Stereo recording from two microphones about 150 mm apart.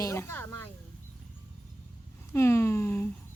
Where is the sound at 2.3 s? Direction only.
20° left (ahead or behind).